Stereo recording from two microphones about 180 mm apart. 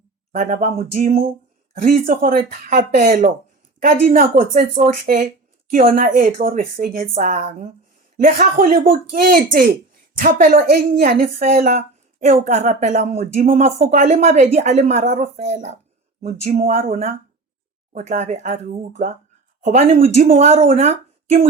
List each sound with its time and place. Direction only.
0.3 s speech: 40° right (ahead or behind)
17.9 s speech: 45° right (ahead or behind)